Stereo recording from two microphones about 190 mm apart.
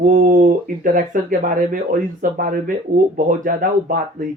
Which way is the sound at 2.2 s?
45° right (ahead or behind).